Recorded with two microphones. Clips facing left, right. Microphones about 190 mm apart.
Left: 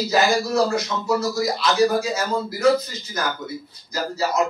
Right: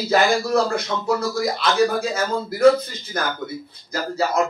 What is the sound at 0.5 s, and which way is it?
A man's voice, 55° right (ahead or behind).